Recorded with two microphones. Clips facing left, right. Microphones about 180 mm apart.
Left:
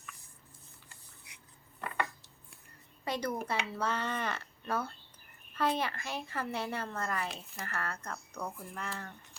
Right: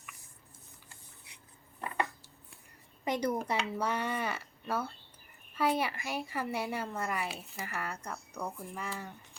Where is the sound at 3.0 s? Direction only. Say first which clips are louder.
Right 3 dB; 20° right (ahead or behind).